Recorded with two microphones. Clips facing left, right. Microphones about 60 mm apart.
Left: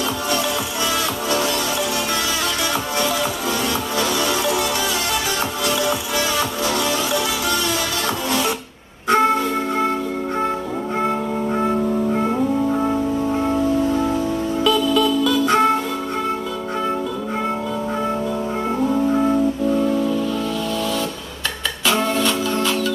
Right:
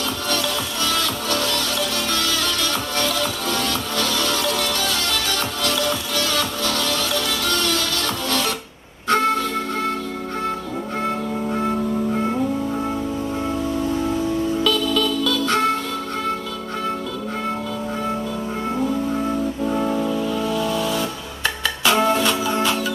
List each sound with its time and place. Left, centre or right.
1.3 s music: centre
3.0 s music: centre
5.7 s music: centre
11.0 s music: centre
14.6 s music: centre
19.8 s music: centre